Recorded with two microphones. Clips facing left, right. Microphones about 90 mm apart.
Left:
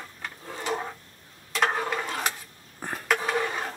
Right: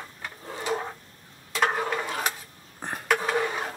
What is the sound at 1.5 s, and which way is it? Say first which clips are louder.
Stir: right 1 dB; 5° right (ahead or behind).